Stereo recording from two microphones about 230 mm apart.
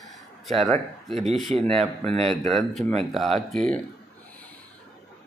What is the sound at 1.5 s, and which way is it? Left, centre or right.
Speech, right.